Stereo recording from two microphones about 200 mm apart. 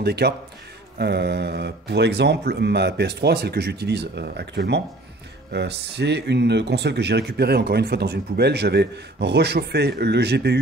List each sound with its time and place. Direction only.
0.0 s a man's voice: 55° right (ahead or behind)